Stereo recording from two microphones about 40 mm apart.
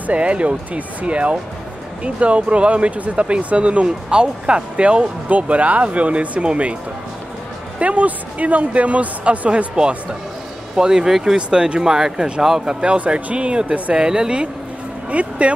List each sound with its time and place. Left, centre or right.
0.0 s speech: right
7.8 s speech: right
10.8 s speech: centre
11.3 s speech: right